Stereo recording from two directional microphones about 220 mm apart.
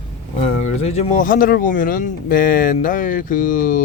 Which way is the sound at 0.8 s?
30° left (ahead or behind).